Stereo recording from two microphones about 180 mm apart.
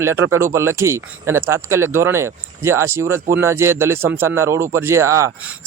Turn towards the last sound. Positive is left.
turn(degrees=-15)  # may be behind; listen again after turning